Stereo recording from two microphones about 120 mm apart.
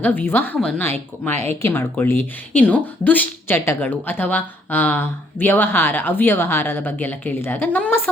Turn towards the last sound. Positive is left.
turn(degrees=15)  # may be behind; listen again after turning